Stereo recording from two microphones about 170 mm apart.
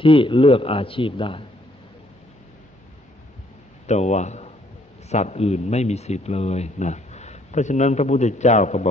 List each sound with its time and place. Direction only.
0.0 s speech: 30° left (ahead or behind)
3.8 s speech: 40° left (ahead or behind)